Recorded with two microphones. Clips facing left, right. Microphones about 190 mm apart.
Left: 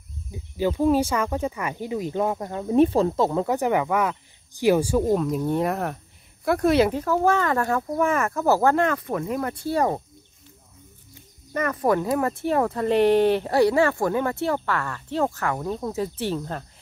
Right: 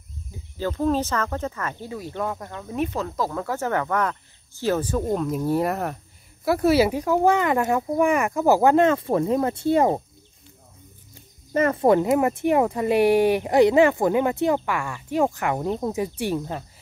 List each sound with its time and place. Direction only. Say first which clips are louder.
0.3 s speech: left 4 dB; 15° left (ahead or behind); by 10.0 s 20° right (ahead or behind)
11.5 s speech: right 4 dB; 25° right (ahead or behind); by 16.6 s 10° right (ahead or behind)